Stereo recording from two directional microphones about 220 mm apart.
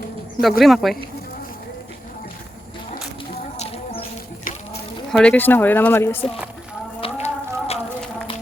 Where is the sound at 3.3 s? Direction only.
25° left (ahead or behind).